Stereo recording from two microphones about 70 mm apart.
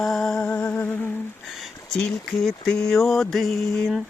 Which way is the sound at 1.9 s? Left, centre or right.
Centre.